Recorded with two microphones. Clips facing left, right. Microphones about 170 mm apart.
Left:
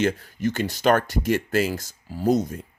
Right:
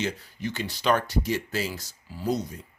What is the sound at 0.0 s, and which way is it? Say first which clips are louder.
Speech: left 7 dB; 50° left (ahead or behind).